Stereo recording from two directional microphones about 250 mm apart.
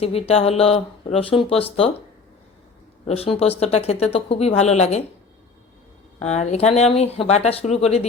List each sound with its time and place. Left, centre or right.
0.0 s speech: left
3.1 s speech: left
6.1 s speech: left